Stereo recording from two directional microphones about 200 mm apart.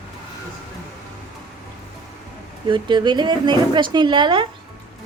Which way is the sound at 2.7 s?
25° right (ahead or behind).